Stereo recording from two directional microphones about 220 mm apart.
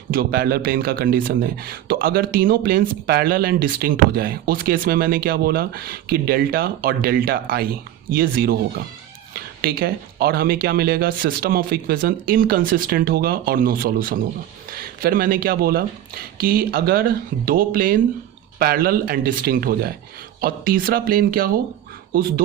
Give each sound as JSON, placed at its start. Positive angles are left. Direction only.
{"t": 0.1, "sound": "speech", "side_deg": -40}